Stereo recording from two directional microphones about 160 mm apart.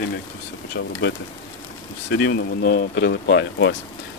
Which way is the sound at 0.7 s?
90° left.